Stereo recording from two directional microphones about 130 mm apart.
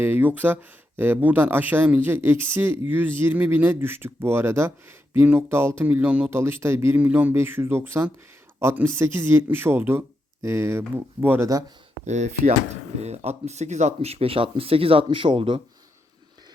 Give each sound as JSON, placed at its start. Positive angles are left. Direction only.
{"t": 0.0, "sound": "speech", "side_deg": -15}
{"t": 12.0, "sound": "speech", "side_deg": -65}